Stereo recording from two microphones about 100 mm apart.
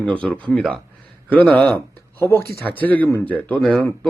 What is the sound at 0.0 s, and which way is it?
Speech, 10° left (ahead or behind).